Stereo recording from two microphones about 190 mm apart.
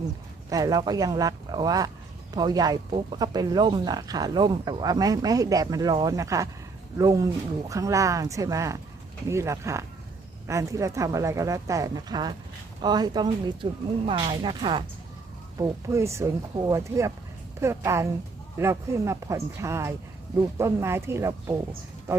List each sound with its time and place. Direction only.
0.5 s speech: 20° right (ahead or behind)